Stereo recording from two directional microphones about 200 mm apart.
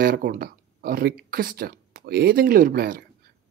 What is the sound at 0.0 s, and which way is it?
Speech, 50° right (ahead or behind).